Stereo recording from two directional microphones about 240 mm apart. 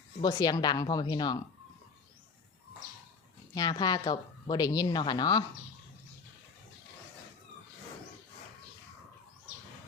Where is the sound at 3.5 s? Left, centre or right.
Centre.